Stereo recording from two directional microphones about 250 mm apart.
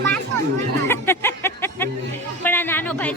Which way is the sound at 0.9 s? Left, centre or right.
Centre.